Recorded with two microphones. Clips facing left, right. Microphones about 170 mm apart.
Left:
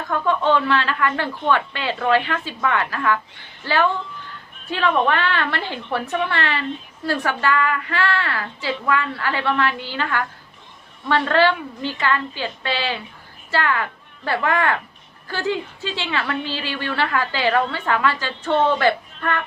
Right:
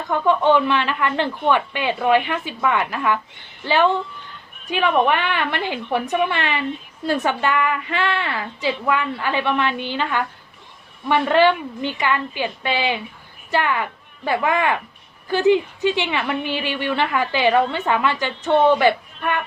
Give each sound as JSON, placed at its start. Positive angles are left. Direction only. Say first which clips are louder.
{"t": 0.1, "sound": "a woman's voice", "louder": "right 3 dB", "side_deg": -15}